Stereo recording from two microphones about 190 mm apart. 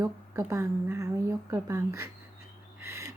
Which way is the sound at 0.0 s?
15° right (ahead or behind).